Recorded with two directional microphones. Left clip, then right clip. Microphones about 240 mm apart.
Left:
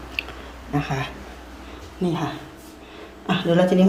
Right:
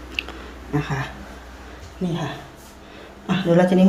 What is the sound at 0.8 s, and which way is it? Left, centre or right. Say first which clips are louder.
Speech: left 1 dB; centre.